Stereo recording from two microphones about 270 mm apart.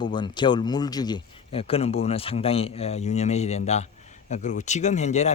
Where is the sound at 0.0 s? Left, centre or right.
Centre.